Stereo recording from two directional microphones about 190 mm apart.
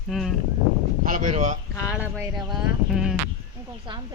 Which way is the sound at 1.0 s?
45° right (ahead or behind).